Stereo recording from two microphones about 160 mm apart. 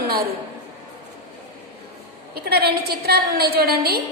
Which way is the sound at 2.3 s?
85° right.